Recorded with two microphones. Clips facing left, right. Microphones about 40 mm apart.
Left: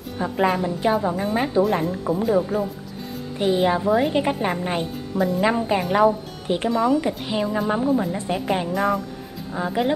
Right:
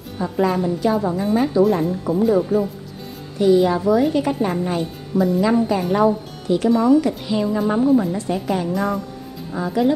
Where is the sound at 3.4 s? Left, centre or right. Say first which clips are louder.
Right 4 dB; left.